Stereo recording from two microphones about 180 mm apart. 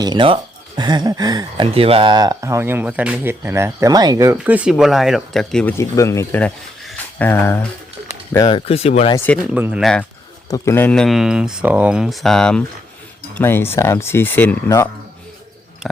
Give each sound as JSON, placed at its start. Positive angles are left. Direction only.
{"t": 0.0, "sound": "speech", "side_deg": -25}
{"t": 5.7, "sound": "speech", "side_deg": 15}
{"t": 8.3, "sound": "speech", "side_deg": 20}
{"t": 9.1, "sound": "speech", "side_deg": 10}
{"t": 9.5, "sound": "speech", "side_deg": -5}
{"t": 9.8, "sound": "speech", "side_deg": 5}